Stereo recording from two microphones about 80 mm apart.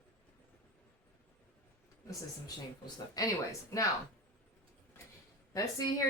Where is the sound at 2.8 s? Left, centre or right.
Left.